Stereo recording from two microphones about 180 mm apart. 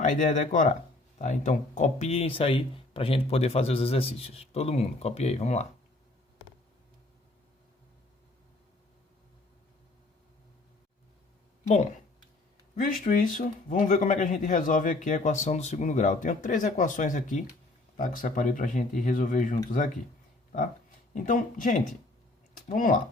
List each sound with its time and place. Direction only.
0.0 s speech: 45° left (ahead or behind)
11.7 s speech: 40° left (ahead or behind)
21.2 s speech: 45° left (ahead or behind)